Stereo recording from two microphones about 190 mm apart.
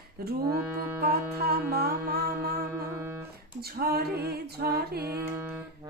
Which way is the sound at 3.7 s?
55° right (ahead or behind).